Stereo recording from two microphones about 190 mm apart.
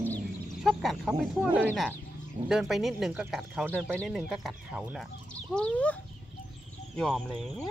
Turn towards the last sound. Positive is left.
turn(degrees=5)  # may be behind; listen again after turning